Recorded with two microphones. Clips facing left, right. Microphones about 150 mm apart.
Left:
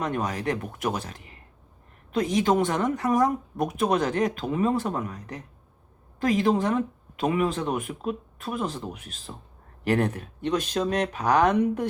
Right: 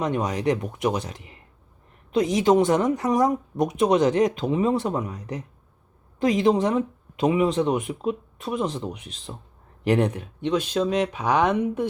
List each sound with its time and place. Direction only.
0.0 s speech: 20° right (ahead or behind)